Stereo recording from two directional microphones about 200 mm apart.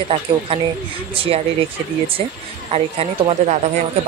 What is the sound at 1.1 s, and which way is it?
Speech, 30° right (ahead or behind).